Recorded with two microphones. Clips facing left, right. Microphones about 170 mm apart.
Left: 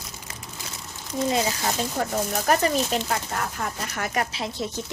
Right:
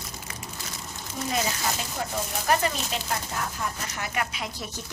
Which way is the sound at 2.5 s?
45° left (ahead or behind).